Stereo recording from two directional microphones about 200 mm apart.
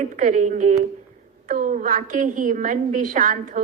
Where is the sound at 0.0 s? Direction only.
40° right (ahead or behind).